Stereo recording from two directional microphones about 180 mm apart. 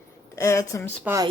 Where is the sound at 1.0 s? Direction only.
15° right (ahead or behind).